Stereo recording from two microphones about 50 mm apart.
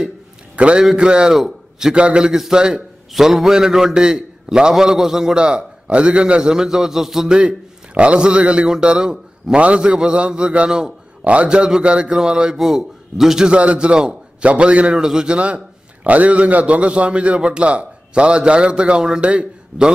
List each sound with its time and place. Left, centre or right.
0.6 s a man's voice: right
1.3 s a man's voice: centre
2.0 s a man's voice: right
2.2 s a man's voice: centre
5.4 s a man's voice: right
7.3 s a man's voice: right
12.5 s a man's voice: centre
13.5 s a man's voice: right
15.0 s a man's voice: centre
15.3 s a man's voice: right